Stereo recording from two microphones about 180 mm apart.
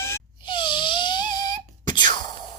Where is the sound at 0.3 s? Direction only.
25° left (ahead or behind).